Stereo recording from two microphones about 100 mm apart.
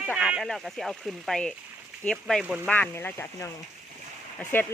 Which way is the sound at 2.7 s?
15° left (ahead or behind).